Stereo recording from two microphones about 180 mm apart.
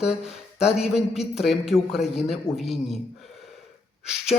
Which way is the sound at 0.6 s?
Centre (ahead or behind).